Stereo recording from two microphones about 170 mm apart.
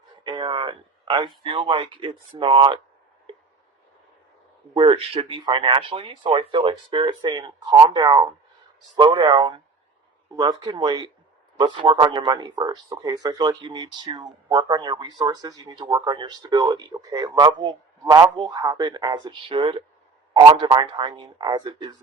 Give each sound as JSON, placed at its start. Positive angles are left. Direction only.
{"t": 0.3, "sound": "speech", "side_deg": -25}
{"t": 4.7, "sound": "speech", "side_deg": -30}